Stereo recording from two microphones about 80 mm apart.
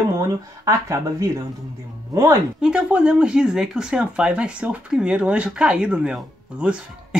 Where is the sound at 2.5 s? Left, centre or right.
Centre.